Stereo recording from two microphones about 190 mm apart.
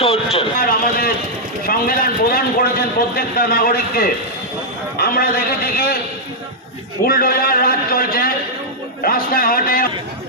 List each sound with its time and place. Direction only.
0.6 s a sound: 50° left (ahead or behind)
1.6 s a man's voice: 50° left (ahead or behind)
7.0 s a man's voice: 50° left (ahead or behind)